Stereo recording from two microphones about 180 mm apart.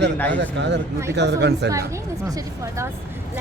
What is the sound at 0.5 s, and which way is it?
Speech, 75° right (ahead or behind).